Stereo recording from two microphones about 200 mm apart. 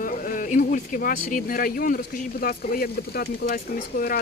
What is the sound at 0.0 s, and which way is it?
Speech, 45° left (ahead or behind).